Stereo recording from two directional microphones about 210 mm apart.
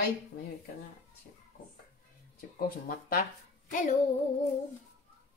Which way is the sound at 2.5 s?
40° left (ahead or behind).